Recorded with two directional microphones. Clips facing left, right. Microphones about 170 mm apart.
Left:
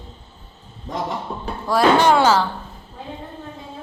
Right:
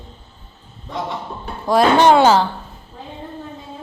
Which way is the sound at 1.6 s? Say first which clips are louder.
Right 3 dB; 20° right (ahead or behind).